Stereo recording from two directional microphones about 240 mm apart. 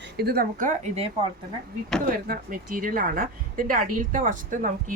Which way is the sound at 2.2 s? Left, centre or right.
Right.